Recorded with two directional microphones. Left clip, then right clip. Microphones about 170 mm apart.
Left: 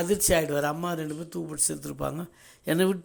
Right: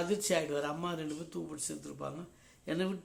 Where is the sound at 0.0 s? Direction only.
45° left (ahead or behind).